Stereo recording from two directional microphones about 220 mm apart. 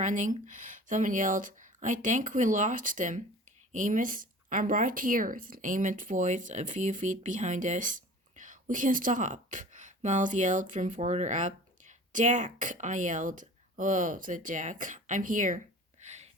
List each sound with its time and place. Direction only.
0.0 s speech: 35° right (ahead or behind)